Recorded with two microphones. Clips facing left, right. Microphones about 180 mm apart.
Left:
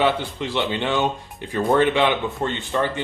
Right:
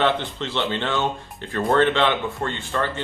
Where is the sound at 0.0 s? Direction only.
10° left (ahead or behind).